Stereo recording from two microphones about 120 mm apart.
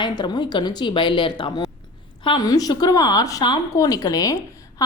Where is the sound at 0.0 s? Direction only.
35° left (ahead or behind).